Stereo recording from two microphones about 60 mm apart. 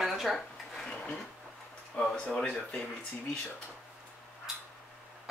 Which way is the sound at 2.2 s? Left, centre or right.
Centre.